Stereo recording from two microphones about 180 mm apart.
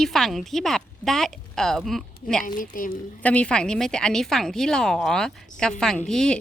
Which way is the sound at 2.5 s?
50° left (ahead or behind).